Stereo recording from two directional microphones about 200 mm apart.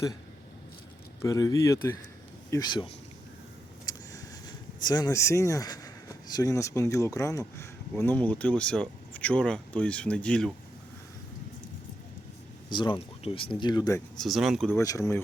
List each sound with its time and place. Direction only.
1.2 s speech: 15° left (ahead or behind)
12.7 s speech: 25° left (ahead or behind)
14.2 s speech: centre (ahead or behind)
14.8 s speech: 15° left (ahead or behind)